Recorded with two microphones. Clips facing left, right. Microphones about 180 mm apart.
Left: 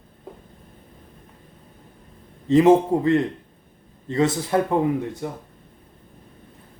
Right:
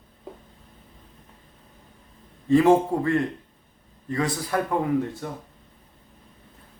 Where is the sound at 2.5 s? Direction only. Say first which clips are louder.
Left 3 dB; 20° left (ahead or behind).